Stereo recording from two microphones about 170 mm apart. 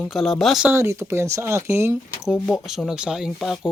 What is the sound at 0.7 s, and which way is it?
Speech, 15° right (ahead or behind).